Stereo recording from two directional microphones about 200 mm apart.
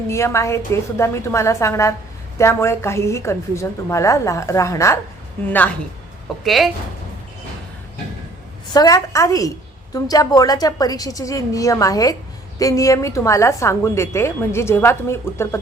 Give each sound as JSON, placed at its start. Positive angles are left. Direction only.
{"t": 0.1, "sound": "a woman's voice", "side_deg": 15}
{"t": 8.7, "sound": "a woman's voice", "side_deg": 20}